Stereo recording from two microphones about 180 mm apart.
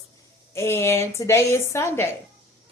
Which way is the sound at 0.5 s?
15° left (ahead or behind).